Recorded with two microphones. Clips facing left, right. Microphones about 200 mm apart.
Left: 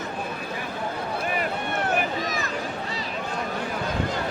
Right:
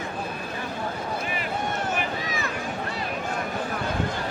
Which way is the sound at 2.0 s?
40° left (ahead or behind).